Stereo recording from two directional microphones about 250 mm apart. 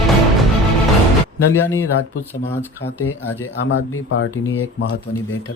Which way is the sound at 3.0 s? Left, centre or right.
Left.